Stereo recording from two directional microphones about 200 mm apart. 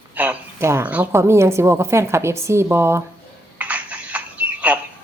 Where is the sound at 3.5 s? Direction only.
5° right (ahead or behind).